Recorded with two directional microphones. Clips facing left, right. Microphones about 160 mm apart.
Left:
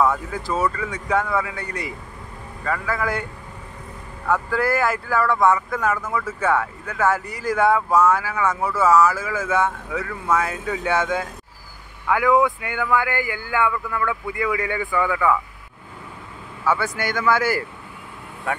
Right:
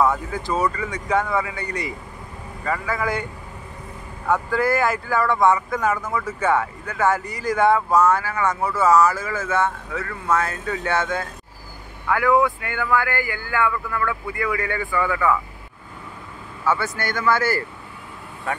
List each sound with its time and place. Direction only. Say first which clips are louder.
0.0 s speech: even; centre (ahead or behind)
4.3 s speech: right 1 dB; 5° left (ahead or behind)
16.6 s speech: left 1 dB; 10° left (ahead or behind)